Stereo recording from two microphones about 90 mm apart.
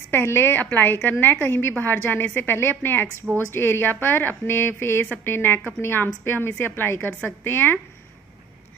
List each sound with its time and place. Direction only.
0.1 s a woman's voice: 25° left (ahead or behind)